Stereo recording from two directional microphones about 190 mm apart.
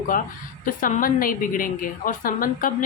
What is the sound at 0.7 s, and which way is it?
A woman's voice, 45° left (ahead or behind).